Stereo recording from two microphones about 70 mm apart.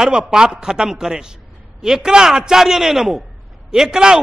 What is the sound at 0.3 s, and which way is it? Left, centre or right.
A man's voice, centre.